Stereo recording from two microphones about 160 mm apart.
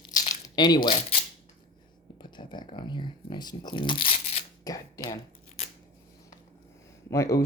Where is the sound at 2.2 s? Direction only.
30° left (ahead or behind).